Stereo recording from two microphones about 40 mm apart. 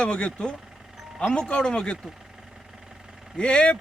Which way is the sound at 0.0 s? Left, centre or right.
Left.